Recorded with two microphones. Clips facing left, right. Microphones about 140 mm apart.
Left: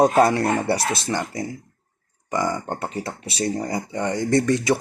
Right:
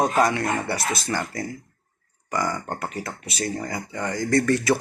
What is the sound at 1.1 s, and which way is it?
Speech, 20° left (ahead or behind).